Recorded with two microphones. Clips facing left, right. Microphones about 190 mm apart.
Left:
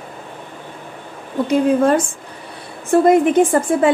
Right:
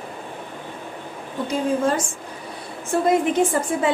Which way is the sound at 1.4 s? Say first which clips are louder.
Left 7 dB; 60° left (ahead or behind).